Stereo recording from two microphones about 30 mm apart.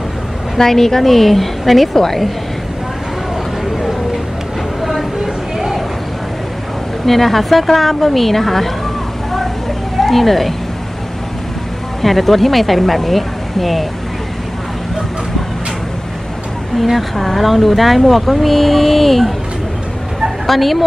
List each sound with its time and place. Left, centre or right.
0.6 s a woman's voice: centre
4.8 s a sound: centre
7.1 s speech: centre
9.9 s speech: centre
12.0 s speech: centre
16.7 s speech: centre
20.4 s speech: centre